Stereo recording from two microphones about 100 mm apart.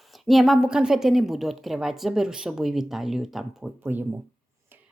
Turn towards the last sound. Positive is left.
turn(degrees=-20)  # may be behind; listen again after turning